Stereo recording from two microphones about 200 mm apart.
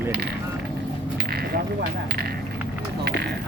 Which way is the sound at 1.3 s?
50° right (ahead or behind).